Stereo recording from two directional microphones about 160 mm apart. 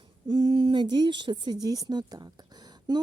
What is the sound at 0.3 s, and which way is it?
A woman's voice, 30° right (ahead or behind).